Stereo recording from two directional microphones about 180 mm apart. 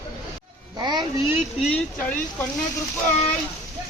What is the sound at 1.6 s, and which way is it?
Speech, 5° left (ahead or behind).